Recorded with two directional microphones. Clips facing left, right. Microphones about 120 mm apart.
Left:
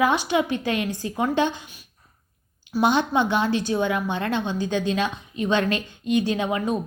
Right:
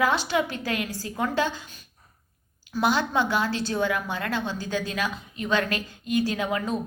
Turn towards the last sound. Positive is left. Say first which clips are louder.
# left 3 dB
turn(degrees=20)  # may be behind; listen again after turning